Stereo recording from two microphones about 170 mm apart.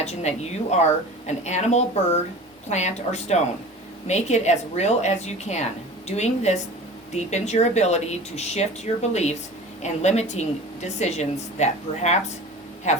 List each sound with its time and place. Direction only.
0.0 s a woman's voice: 40° left (ahead or behind)